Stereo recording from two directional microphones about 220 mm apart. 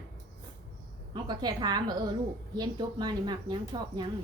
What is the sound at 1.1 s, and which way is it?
Speech, 20° right (ahead or behind).